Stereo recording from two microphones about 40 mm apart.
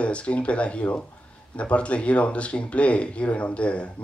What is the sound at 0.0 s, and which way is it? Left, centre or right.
Speech, left.